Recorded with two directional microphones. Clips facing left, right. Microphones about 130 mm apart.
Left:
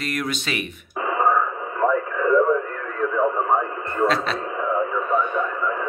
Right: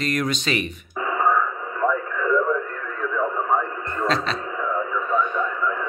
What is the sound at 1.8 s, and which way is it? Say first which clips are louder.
Radio: left 2 dB; 30° left (ahead or behind).